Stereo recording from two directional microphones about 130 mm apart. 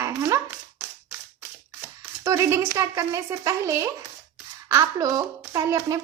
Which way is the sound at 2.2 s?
25° right (ahead or behind).